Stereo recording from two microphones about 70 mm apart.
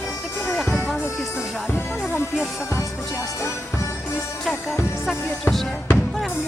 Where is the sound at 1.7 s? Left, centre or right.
Left.